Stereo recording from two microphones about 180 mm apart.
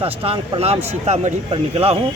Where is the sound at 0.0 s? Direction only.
30° right (ahead or behind).